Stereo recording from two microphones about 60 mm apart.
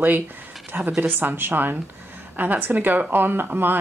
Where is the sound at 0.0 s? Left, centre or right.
Right.